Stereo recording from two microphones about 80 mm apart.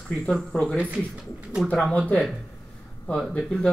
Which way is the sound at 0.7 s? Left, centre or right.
Centre.